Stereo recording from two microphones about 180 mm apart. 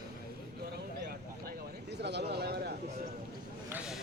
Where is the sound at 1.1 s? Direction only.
65° right (ahead or behind).